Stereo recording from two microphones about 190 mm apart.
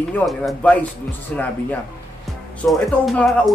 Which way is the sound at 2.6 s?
5° left (ahead or behind).